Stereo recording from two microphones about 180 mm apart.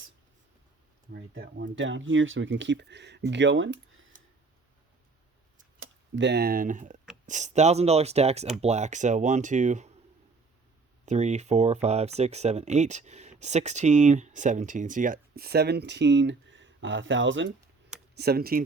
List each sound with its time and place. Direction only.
1.1 s speech: 75° right (ahead or behind); by 3.8 s 90° right
5.8 s speech: 80° right; by 9.9 s 40° right (ahead or behind)
11.0 s speech: 40° right (ahead or behind); by 17.5 s 90° right
18.2 s speech: 60° right (ahead or behind)